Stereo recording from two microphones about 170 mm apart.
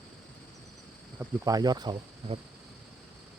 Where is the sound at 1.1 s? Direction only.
20° right (ahead or behind).